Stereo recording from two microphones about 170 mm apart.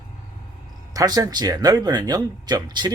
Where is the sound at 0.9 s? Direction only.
20° right (ahead or behind).